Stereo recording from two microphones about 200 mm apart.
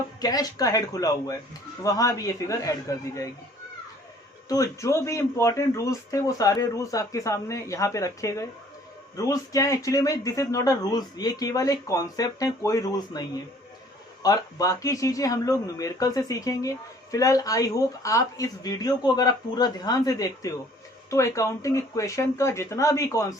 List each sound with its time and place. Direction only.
0.2 s speech: 20° left (ahead or behind)
4.4 s speech: 15° left (ahead or behind)